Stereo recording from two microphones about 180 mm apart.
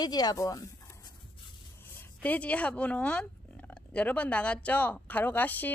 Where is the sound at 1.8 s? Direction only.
15° left (ahead or behind).